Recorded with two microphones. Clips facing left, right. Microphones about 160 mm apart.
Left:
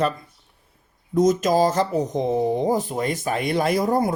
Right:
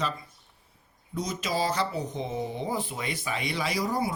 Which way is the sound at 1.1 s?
45° left (ahead or behind).